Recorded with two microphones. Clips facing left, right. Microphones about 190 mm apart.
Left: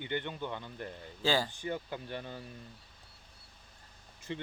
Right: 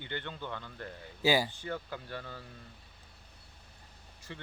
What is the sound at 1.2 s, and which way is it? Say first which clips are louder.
Speech: right 2 dB; 10° right (ahead or behind).